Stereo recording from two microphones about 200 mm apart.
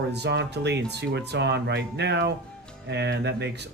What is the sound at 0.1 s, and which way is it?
Speech, 60° right (ahead or behind).